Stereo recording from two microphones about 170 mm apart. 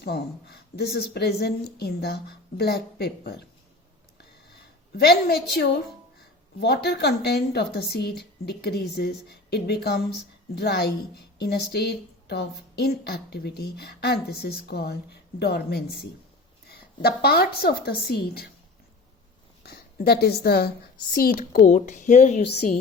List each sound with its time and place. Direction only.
0.0 s speech: 70° left (ahead or behind)
4.9 s speech: 70° left (ahead or behind)
19.6 s a woman's voice: 70° left (ahead or behind); by 22.4 s 45° left (ahead or behind)